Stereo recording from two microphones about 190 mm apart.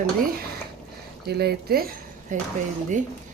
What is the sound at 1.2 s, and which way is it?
Speech, 55° right (ahead or behind).